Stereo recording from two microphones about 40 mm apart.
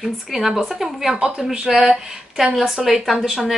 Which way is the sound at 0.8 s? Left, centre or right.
Centre.